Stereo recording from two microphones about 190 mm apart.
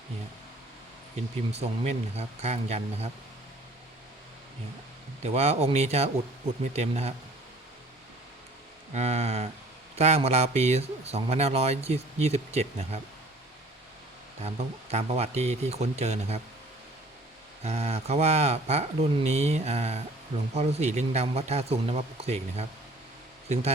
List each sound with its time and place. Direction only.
1.5 s speech: 35° right (ahead or behind)
5.2 s speech: 35° right (ahead or behind)
8.9 s speech: 35° right (ahead or behind)
14.4 s speech: 35° right (ahead or behind)
17.6 s speech: 35° right (ahead or behind)